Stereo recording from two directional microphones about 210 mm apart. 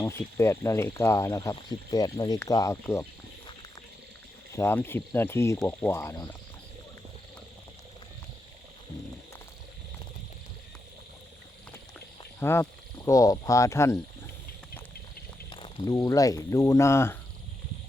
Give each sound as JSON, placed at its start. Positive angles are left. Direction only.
{"t": 0.0, "sound": "speech", "side_deg": 10}
{"t": 4.5, "sound": "speech", "side_deg": 10}
{"t": 12.4, "sound": "speech", "side_deg": 10}
{"t": 15.4, "sound": "speech", "side_deg": 20}